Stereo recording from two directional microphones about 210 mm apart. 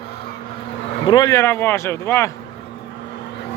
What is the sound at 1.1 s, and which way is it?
Speech, 15° left (ahead or behind).